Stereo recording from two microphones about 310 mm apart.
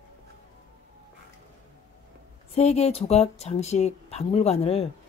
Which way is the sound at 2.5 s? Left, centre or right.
Centre.